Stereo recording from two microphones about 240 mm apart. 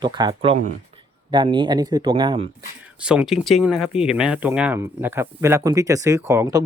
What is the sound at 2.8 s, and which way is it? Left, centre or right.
Speech, centre.